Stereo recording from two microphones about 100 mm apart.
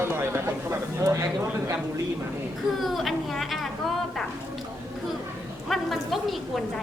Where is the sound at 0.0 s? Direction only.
25° right (ahead or behind).